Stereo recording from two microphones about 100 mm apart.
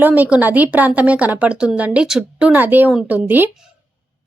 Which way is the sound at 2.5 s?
20° right (ahead or behind).